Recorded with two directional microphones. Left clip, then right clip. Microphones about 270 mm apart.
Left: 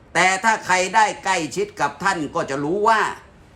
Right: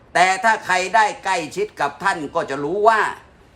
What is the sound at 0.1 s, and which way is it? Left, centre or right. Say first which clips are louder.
A man's voice: right 2 dB; centre.